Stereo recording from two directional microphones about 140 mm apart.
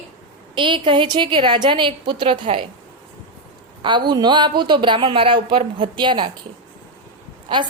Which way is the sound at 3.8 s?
35° right (ahead or behind).